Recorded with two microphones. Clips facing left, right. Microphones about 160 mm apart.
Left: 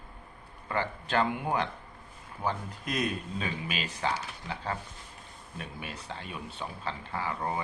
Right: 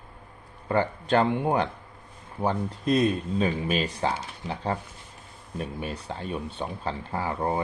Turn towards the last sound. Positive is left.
turn(degrees=-35)  # may be behind; listen again after turning